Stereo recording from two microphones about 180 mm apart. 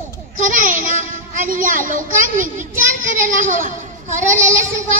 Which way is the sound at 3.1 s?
50° right (ahead or behind).